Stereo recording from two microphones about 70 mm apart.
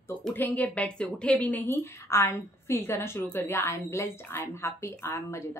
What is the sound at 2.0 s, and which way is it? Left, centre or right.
Speech, left.